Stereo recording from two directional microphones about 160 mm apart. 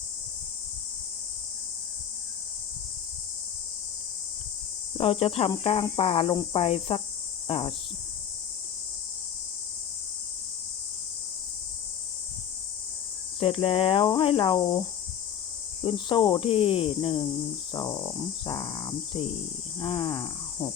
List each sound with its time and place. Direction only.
4.9 s speech: 35° left (ahead or behind)
13.4 s speech: 35° left (ahead or behind)
15.8 s speech: 30° left (ahead or behind)
17.7 s speech: 25° left (ahead or behind)
19.8 s cricket: 35° left (ahead or behind)